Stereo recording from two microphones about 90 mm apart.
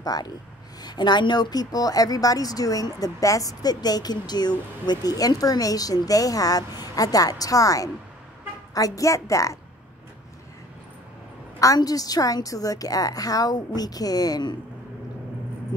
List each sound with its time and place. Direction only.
0.0 s a woman's voice: 45° left (ahead or behind)
11.6 s speech: 40° left (ahead or behind)